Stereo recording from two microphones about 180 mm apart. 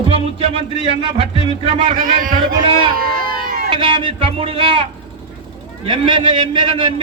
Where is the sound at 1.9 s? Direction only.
50° right (ahead or behind).